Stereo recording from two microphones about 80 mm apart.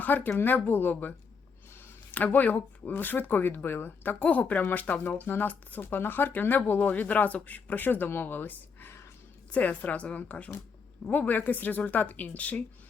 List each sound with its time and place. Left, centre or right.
0.0 s a woman's voice: left